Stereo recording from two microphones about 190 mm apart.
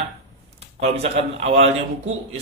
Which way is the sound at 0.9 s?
30° right (ahead or behind).